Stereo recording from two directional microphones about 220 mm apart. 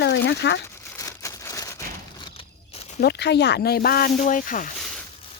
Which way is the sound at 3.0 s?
50° left (ahead or behind).